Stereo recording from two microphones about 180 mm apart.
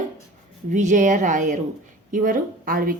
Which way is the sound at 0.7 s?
45° right (ahead or behind).